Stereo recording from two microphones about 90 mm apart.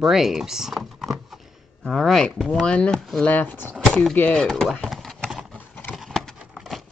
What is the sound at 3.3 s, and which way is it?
Speech, 20° left (ahead or behind).